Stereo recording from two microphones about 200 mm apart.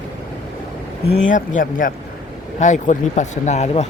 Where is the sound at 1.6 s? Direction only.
45° left (ahead or behind).